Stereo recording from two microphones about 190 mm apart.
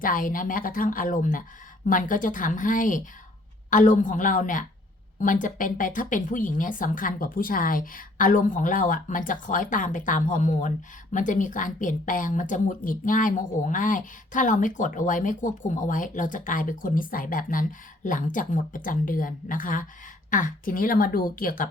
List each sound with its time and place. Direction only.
0.0 s a woman's voice: 45° left (ahead or behind)